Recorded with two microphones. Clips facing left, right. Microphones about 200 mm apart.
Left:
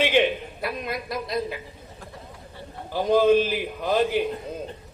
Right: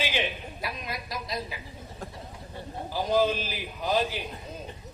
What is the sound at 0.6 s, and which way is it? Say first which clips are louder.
Speech: left 5 dB; 55° left (ahead or behind).